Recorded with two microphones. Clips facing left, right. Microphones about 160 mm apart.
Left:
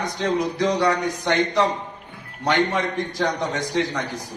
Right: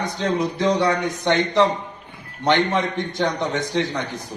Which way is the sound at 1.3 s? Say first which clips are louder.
Right 3 dB; 25° right (ahead or behind).